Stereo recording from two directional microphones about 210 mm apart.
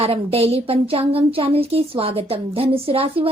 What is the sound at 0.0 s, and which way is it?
Speech, 30° right (ahead or behind).